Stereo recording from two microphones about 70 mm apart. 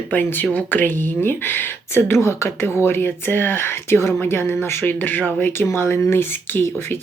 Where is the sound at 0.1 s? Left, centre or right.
Left.